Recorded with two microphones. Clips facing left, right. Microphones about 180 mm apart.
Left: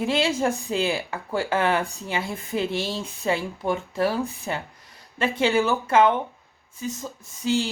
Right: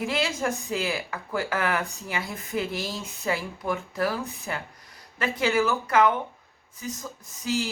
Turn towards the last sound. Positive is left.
turn(degrees=30)  # may be behind; listen again after turning